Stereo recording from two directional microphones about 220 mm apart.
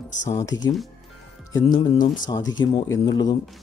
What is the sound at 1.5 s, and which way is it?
Speech, 20° left (ahead or behind).